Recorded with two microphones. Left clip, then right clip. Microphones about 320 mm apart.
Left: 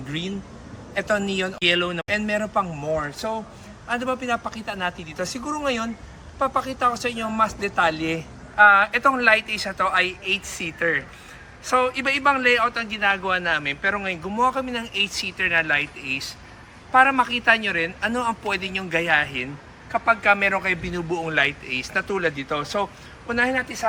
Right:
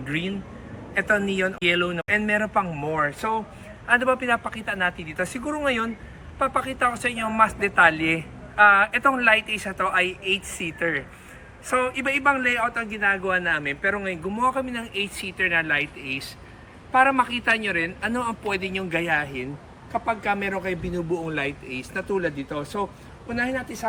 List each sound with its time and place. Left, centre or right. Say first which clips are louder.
0.1 s a man's voice: right 2 dB; centre